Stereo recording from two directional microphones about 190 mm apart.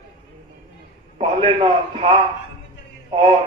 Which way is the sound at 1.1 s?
30° right (ahead or behind).